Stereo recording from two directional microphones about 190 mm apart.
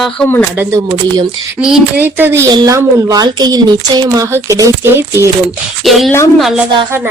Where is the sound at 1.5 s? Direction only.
5° right (ahead or behind).